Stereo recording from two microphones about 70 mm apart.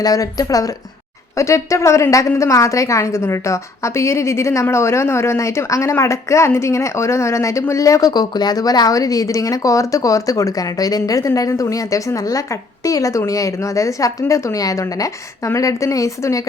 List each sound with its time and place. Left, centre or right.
0.0 s speech: left
1.4 s a woman's voice: left
8.1 s a woman's voice: left